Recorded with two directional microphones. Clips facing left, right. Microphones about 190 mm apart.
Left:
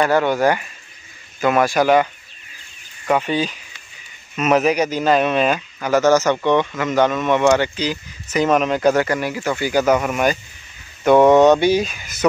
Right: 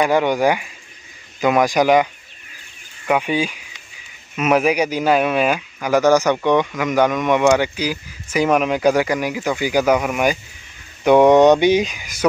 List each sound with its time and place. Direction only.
0.0 s speech: 15° right (ahead or behind)
3.1 s speech: 10° right (ahead or behind)